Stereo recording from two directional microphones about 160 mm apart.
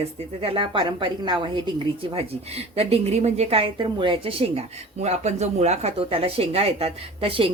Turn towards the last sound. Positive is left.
turn(degrees=-35)  # may be behind; listen again after turning